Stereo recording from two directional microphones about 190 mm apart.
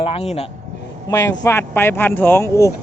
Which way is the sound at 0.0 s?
35° left (ahead or behind).